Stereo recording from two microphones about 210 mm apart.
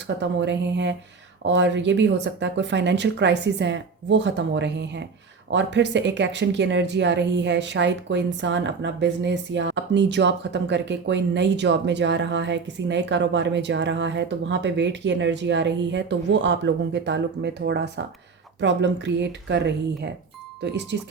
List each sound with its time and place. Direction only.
0.2 s speech: 55° right (ahead or behind)